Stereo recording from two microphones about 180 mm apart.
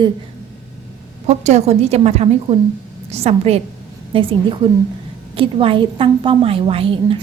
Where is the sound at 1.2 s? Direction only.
40° right (ahead or behind).